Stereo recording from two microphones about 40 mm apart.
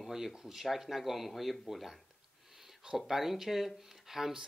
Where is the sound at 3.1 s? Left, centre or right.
Centre.